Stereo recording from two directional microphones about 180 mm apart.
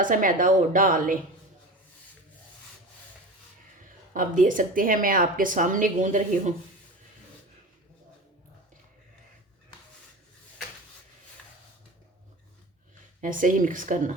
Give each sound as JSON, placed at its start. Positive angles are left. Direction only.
{"t": 0.0, "sound": "speech", "side_deg": -50}
{"t": 4.1, "sound": "speech", "side_deg": -45}
{"t": 13.2, "sound": "speech", "side_deg": -45}